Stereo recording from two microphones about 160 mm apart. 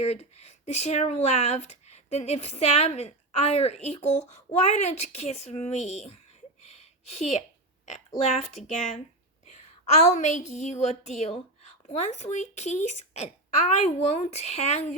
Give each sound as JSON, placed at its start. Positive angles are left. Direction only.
{"t": 0.0, "sound": "speech", "side_deg": 40}
{"t": 6.6, "sound": "a sound", "side_deg": 45}
{"t": 7.9, "sound": "a woman's voice", "side_deg": 45}